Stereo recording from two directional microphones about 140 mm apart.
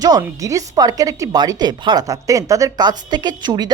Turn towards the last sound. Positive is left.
turn(degrees=-30)  # may be behind; listen again after turning